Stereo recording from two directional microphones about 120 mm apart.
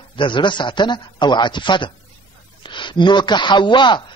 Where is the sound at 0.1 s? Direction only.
40° left (ahead or behind).